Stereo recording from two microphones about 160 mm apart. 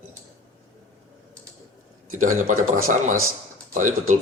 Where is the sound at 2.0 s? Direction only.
55° right (ahead or behind).